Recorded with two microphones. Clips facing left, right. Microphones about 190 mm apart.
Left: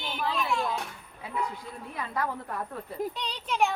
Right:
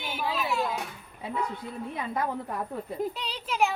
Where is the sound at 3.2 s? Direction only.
5° right (ahead or behind).